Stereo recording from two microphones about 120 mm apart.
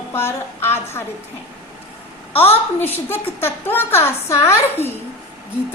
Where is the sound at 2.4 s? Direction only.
15° left (ahead or behind).